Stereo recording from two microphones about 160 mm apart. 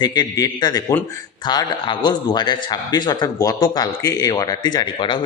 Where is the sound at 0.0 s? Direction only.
25° left (ahead or behind).